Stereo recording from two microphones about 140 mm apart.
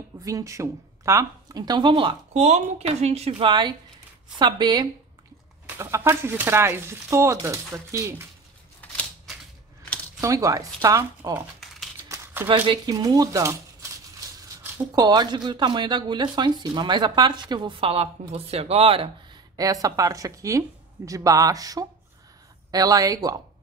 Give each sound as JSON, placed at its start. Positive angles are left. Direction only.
{"t": 0.2, "sound": "speech", "side_deg": -25}
{"t": 2.4, "sound": "speech", "side_deg": -50}
{"t": 5.8, "sound": "speech", "side_deg": -20}
{"t": 8.8, "sound": "scissors", "side_deg": 10}
{"t": 10.2, "sound": "speech", "side_deg": -25}
{"t": 12.4, "sound": "speech", "side_deg": -35}
{"t": 15.0, "sound": "speech", "side_deg": -30}
{"t": 19.5, "sound": "speech", "side_deg": -25}